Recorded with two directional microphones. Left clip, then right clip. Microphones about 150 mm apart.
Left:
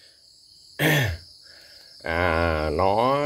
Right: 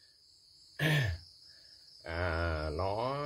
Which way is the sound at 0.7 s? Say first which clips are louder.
Left 11 dB; 40° left (ahead or behind).